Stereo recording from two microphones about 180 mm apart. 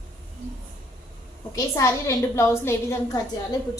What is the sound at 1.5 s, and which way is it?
A woman's voice, 15° left (ahead or behind).